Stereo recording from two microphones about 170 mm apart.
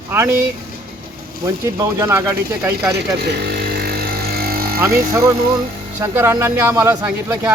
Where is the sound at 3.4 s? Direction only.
65° right (ahead or behind).